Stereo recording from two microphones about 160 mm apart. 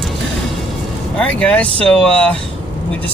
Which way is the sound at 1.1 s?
5° left (ahead or behind).